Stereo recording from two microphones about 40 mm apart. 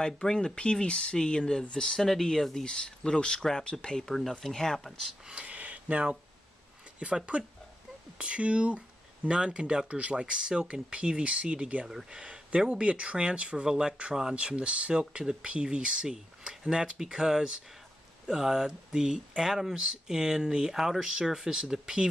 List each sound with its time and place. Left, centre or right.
0.0 s speech: centre
5.3 s a sound: right
7.0 s speech: right
13.7 s speech: centre
14.3 s speech: right